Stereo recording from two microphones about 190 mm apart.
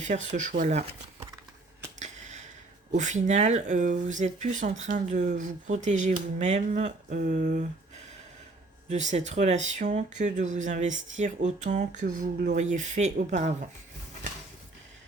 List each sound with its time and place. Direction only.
0.0 s speech: 40° right (ahead or behind)
2.0 s finger snapping: 40° right (ahead or behind)
2.9 s speech: 40° right (ahead or behind)
8.9 s speech: 35° right (ahead or behind)